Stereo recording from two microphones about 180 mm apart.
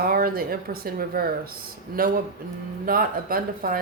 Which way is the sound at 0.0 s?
55° right (ahead or behind).